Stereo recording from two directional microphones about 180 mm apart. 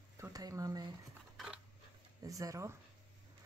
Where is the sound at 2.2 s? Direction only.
20° right (ahead or behind).